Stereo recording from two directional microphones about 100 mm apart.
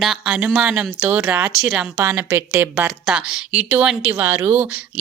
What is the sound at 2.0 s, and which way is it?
Speech, 25° right (ahead or behind).